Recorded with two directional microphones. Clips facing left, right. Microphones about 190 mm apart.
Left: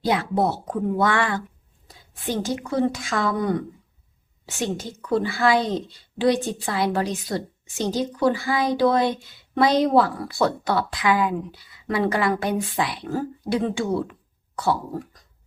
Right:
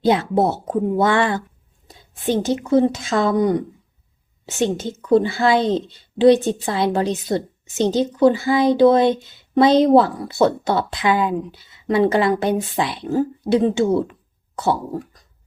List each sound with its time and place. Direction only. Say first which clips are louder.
0.0 s speech: right 5 dB; 25° right (ahead or behind)